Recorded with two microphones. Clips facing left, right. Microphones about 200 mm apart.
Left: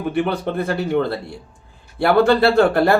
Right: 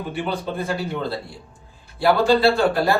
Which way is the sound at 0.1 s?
60° left (ahead or behind).